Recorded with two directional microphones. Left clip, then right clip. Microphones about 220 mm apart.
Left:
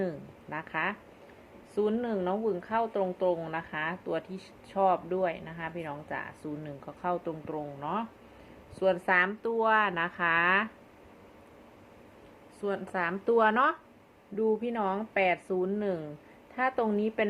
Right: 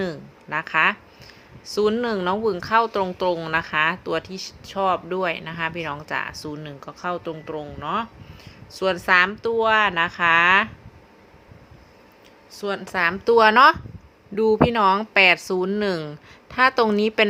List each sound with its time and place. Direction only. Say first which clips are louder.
0.0 s a woman's voice: right 6 dB; 25° right (ahead or behind)
6.6 s a woman's voice: right 6 dB; 20° right (ahead or behind)
12.6 s a woman's voice: right 9 dB; 25° right (ahead or behind)